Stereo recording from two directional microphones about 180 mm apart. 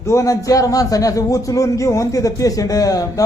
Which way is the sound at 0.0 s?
15° left (ahead or behind).